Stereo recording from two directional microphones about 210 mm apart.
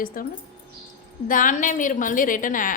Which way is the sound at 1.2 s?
40° left (ahead or behind).